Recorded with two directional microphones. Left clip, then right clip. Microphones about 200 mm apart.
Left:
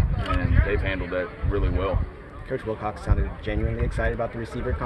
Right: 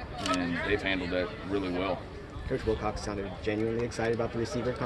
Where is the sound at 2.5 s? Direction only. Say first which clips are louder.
Left 2 dB; 50° left (ahead or behind).